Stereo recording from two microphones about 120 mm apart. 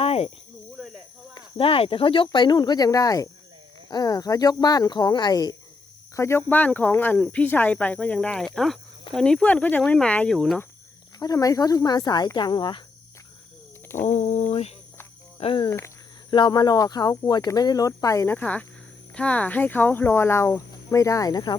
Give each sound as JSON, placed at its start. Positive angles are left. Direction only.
{"t": 0.0, "sound": "cricket", "side_deg": 55}
{"t": 1.5, "sound": "speech", "side_deg": 50}
{"t": 6.1, "sound": "speech", "side_deg": 20}
{"t": 11.2, "sound": "speech", "side_deg": 30}
{"t": 14.0, "sound": "speech", "side_deg": 70}
{"t": 15.4, "sound": "speech", "side_deg": 45}
{"t": 18.3, "sound": "speech", "side_deg": 10}